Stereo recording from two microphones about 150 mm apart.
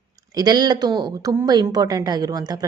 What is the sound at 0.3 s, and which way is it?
A woman's voice, 30° right (ahead or behind).